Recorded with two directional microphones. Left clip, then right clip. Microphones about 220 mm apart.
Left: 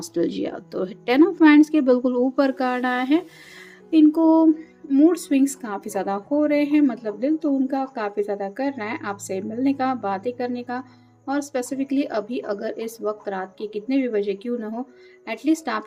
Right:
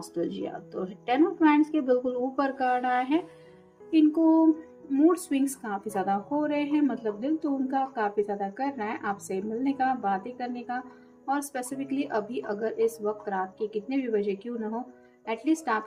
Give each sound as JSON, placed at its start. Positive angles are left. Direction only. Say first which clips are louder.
{"t": 0.1, "sound": "a woman's voice", "louder": "left 8 dB", "side_deg": 40}
{"t": 4.9, "sound": "speech", "louder": "left 6 dB", "side_deg": 35}